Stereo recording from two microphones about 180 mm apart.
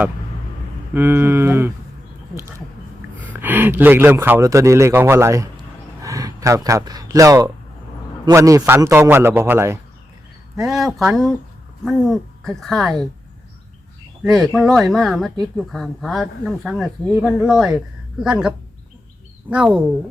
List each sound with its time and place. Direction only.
0.9 s speech: 10° right (ahead or behind)
10.6 s speech: centre (ahead or behind)
14.3 s speech: centre (ahead or behind)